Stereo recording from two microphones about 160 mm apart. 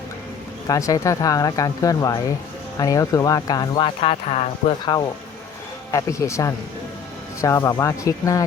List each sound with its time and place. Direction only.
0.7 s speech: 20° left (ahead or behind); by 4.4 s 40° left (ahead or behind)
4.9 s speech: 25° left (ahead or behind)